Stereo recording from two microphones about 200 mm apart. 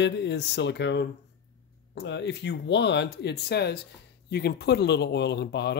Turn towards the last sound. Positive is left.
turn(degrees=55)  # may be behind; listen again after turning